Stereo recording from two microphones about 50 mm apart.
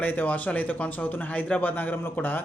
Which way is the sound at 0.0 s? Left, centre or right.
Left.